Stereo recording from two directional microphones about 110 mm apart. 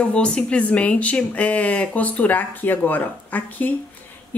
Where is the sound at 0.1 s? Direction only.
10° left (ahead or behind).